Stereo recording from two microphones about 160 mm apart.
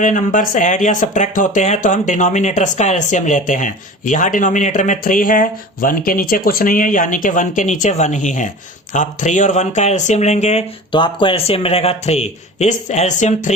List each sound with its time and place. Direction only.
0.0 s speech: 55° left (ahead or behind)
10.9 s speech: 30° left (ahead or behind); by 13.5 s 50° left (ahead or behind)